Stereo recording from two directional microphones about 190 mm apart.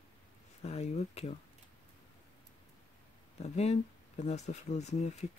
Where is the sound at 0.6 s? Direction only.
35° left (ahead or behind).